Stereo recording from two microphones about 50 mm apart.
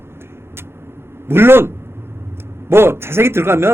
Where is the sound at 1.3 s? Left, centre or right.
Right.